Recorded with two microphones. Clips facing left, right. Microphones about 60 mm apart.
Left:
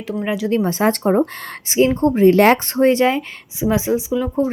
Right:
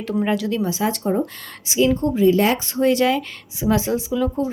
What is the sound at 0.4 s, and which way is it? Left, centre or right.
Speech, left.